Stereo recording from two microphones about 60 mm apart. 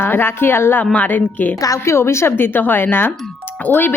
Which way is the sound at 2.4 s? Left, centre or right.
Left.